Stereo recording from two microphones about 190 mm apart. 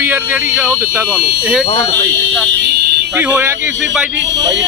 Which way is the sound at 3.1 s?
10° right (ahead or behind).